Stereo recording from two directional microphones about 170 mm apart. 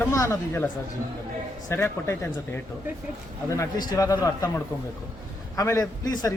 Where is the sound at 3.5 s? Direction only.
20° left (ahead or behind).